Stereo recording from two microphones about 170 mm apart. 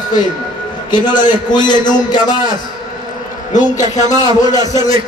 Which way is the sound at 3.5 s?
45° left (ahead or behind).